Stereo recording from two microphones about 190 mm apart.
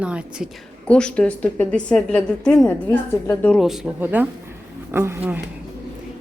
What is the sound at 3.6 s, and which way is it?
A woman's voice, centre (ahead or behind).